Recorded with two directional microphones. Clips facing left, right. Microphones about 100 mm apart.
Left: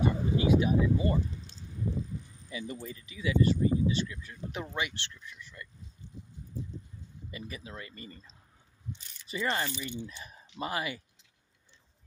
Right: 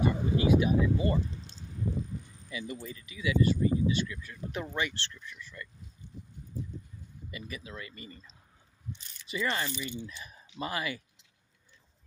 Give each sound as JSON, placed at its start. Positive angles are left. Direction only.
{"t": 0.0, "sound": "speech", "side_deg": 25}
{"t": 2.5, "sound": "speech", "side_deg": 30}
{"t": 7.2, "sound": "speech", "side_deg": 30}
{"t": 9.3, "sound": "speech", "side_deg": 30}